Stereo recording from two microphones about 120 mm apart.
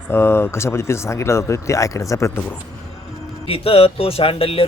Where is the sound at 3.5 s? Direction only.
50° left (ahead or behind).